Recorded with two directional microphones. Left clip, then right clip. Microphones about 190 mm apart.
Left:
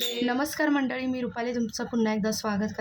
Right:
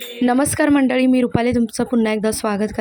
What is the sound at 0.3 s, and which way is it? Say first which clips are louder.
Speech: right 13 dB; 40° right (ahead or behind).